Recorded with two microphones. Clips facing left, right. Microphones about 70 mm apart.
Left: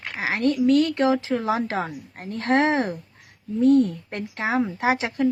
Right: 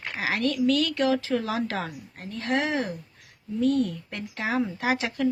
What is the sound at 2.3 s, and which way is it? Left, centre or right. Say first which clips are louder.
A woman's voice: left 6 dB; left.